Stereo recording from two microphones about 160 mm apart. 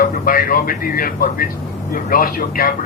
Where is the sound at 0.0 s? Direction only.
60° left (ahead or behind).